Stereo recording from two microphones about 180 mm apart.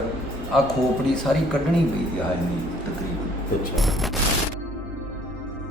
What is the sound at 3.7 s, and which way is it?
Speech, centre (ahead or behind).